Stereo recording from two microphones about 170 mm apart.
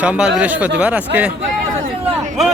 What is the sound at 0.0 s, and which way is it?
Speech, 5° right (ahead or behind).